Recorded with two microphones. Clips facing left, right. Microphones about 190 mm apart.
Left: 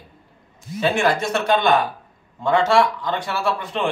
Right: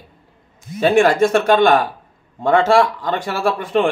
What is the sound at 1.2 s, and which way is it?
Speech, 50° right (ahead or behind).